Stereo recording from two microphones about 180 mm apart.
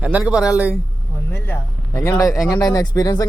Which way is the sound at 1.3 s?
15° left (ahead or behind).